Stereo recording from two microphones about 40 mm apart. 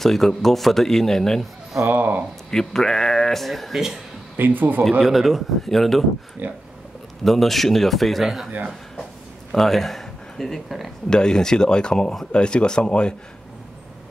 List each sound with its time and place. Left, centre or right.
0.0 s speech: centre
1.9 s a man's voice: right
2.5 s speech: centre
3.4 s speech: centre
4.4 s a man's voice: right
5.0 s speech: centre
6.4 s a man's voice: right
7.2 s speech: centre
9.5 s speech: centre
11.1 s speech: centre